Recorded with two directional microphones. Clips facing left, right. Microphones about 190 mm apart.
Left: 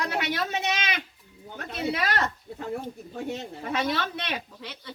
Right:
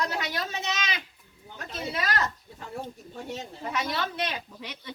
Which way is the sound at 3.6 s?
55° left (ahead or behind).